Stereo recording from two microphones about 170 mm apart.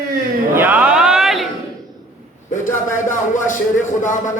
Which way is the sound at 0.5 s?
10° right (ahead or behind).